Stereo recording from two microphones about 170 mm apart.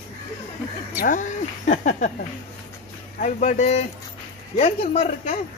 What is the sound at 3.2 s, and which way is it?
Speech, 45° left (ahead or behind).